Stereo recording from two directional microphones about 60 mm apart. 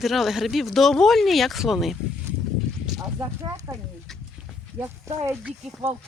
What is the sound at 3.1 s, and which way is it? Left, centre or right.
Speech, right.